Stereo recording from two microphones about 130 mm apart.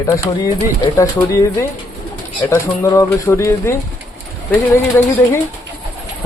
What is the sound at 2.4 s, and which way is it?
Speech, 25° left (ahead or behind).